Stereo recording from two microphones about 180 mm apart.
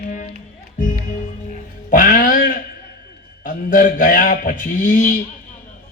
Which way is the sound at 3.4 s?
50° left (ahead or behind).